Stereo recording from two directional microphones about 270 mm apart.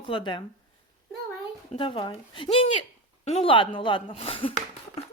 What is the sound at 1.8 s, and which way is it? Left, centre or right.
Speech, centre.